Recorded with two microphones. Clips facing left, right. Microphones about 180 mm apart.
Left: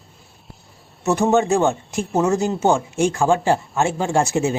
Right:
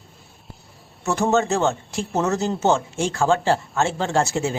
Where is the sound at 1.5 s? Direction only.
15° left (ahead or behind).